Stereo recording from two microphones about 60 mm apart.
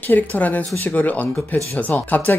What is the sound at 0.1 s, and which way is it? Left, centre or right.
Speech, left.